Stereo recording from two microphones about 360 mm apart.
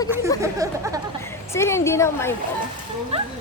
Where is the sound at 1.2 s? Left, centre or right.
Centre.